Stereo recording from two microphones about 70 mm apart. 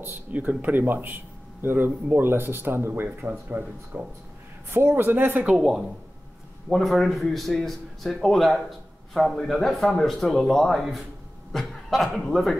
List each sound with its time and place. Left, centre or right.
0.0 s speech: right
4.6 s speech: right
5.6 s a man's voice: centre